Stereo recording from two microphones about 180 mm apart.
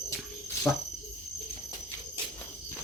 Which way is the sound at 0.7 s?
5° left (ahead or behind).